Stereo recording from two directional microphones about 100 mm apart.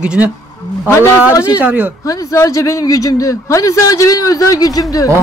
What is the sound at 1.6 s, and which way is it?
Speech, 15° right (ahead or behind).